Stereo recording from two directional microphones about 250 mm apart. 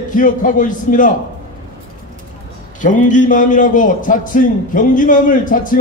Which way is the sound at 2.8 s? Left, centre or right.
Left.